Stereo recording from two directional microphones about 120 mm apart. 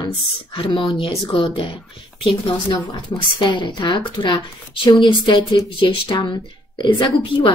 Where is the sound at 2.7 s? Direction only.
35° left (ahead or behind).